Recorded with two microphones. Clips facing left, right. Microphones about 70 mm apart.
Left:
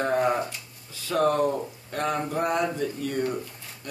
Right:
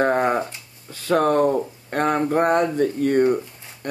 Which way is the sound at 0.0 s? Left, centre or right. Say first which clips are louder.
Right 5 dB; right.